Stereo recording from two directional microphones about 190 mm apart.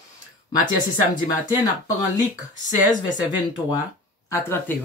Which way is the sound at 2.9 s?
20° left (ahead or behind).